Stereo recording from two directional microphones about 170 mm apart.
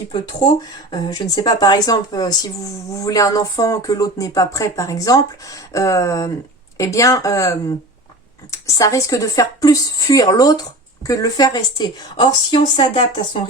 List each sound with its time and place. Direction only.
0.1 s speech: 25° left (ahead or behind)